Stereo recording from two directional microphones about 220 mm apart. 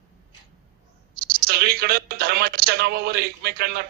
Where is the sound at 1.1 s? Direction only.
45° right (ahead or behind).